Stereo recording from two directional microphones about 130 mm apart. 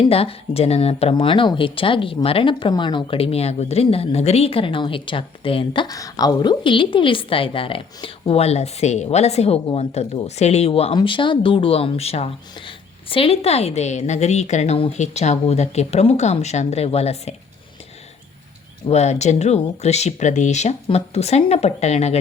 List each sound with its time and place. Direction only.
0.0 s speech: 50° left (ahead or behind)
1.1 s speech: 40° left (ahead or behind)
10.9 s speech: 40° left (ahead or behind)
18.9 s speech: 55° left (ahead or behind)